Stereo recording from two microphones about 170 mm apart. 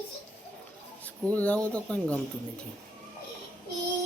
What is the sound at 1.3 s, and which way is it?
Speech, 10° left (ahead or behind).